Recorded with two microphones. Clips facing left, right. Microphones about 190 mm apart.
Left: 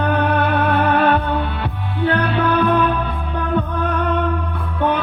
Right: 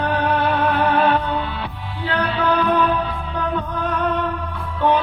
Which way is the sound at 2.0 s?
55° left (ahead or behind).